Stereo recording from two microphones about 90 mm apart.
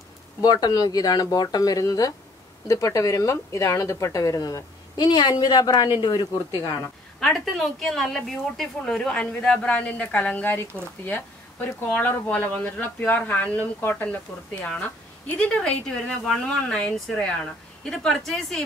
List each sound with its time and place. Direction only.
0.4 s speech: 50° left (ahead or behind)
7.2 s a woman's voice: 5° left (ahead or behind)